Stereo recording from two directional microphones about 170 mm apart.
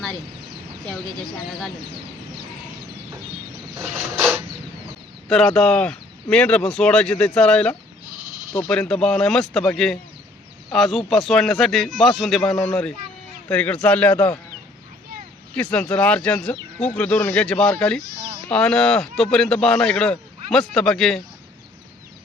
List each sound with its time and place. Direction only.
1.5 s speech: centre (ahead or behind)
3.8 s mechanisms: 15° right (ahead or behind)
5.3 s speech: 5° left (ahead or behind)
8.2 s sheep: 50° right (ahead or behind)
8.6 s speech: 5° left (ahead or behind)
15.5 s speech: 5° left (ahead or behind)